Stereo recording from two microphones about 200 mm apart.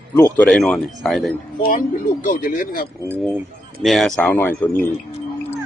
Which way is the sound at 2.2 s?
45° left (ahead or behind).